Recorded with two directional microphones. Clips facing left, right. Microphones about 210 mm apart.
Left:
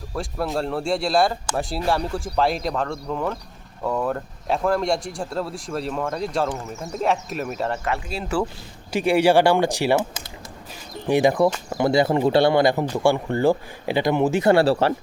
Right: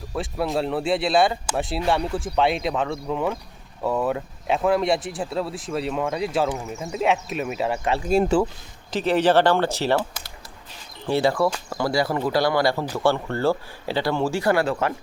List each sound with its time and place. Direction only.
0.1 s speech: centre (ahead or behind)
8.0 s speech: 45° right (ahead or behind)
8.9 s speech: 10° left (ahead or behind); by 14.9 s 30° left (ahead or behind)